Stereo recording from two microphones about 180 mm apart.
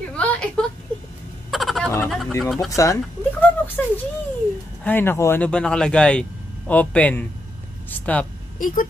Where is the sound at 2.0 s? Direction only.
Centre (ahead or behind).